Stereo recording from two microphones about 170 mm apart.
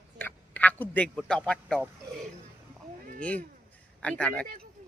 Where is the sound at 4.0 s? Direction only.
5° left (ahead or behind).